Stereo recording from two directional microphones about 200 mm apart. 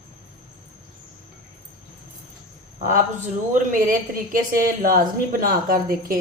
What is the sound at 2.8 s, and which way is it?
A man's voice, 40° right (ahead or behind).